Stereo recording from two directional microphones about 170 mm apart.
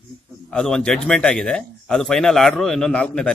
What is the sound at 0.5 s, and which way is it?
Speech, 5° left (ahead or behind).